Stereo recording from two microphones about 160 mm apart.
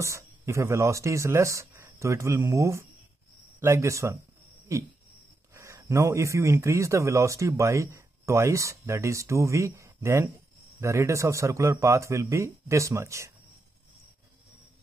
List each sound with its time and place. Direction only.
0.0 s a man's voice: 20° right (ahead or behind)